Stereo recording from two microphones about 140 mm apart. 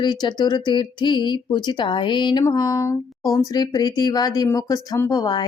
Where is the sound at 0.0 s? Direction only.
30° left (ahead or behind).